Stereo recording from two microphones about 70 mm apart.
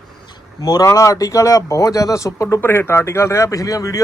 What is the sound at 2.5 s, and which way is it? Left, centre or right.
Speech, left.